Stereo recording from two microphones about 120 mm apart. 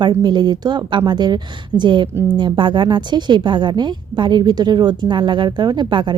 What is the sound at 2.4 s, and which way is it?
A woman's voice, 40° right (ahead or behind).